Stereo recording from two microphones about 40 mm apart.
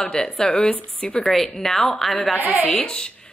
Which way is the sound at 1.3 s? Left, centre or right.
Centre.